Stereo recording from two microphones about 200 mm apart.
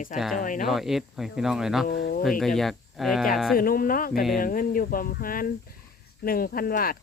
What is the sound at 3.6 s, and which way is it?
Speech, 45° left (ahead or behind).